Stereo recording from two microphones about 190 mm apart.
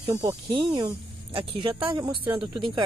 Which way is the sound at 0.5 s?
25° right (ahead or behind).